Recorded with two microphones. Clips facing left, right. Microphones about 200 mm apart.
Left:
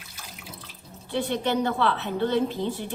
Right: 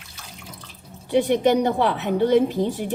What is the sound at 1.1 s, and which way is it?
A woman's voice, 15° right (ahead or behind).